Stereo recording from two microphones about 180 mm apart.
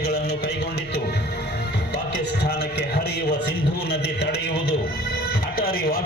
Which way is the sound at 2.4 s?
65° left (ahead or behind).